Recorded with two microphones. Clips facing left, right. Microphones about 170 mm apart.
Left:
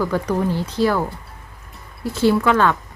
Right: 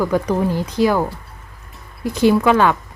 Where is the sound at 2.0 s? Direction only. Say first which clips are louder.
Right 3 dB; 15° right (ahead or behind).